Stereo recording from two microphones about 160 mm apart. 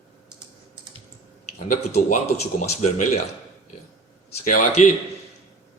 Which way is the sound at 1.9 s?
45° left (ahead or behind).